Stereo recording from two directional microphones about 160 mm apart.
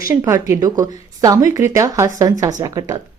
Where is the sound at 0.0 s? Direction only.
20° right (ahead or behind).